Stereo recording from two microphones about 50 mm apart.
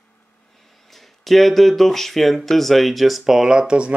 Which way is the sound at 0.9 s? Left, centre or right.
Centre.